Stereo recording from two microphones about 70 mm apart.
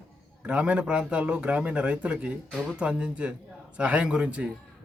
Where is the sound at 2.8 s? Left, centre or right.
Centre.